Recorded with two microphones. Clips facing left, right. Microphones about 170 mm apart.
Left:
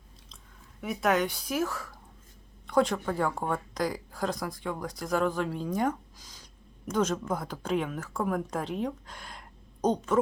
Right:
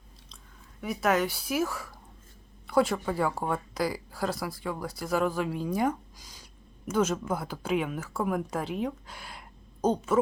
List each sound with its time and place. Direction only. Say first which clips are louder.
0.8 s speech: even; centre (ahead or behind)